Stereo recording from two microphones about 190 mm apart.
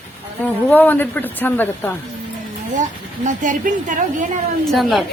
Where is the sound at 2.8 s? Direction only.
40° right (ahead or behind).